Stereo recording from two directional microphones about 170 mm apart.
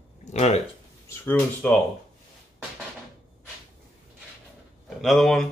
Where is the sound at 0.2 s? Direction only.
40° left (ahead or behind).